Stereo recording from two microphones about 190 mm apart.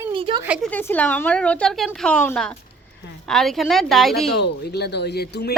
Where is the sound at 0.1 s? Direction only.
25° right (ahead or behind).